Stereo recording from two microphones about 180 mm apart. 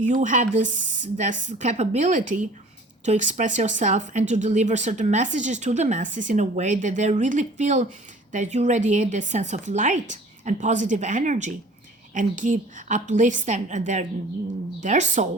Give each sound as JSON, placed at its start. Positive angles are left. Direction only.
{"t": 0.0, "sound": "speech", "side_deg": -45}